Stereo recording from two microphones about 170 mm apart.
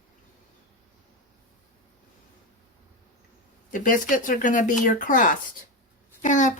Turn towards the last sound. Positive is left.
turn(degrees=50)  # may be behind; listen again after turning